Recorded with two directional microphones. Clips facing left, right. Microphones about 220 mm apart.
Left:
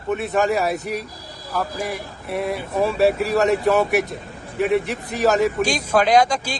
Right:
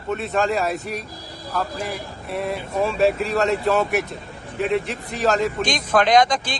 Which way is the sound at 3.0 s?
Centre (ahead or behind).